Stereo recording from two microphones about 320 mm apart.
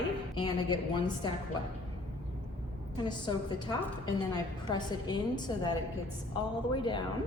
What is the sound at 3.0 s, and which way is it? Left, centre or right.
A woman's voice, centre.